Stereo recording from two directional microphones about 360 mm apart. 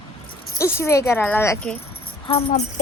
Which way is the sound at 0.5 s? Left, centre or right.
Centre.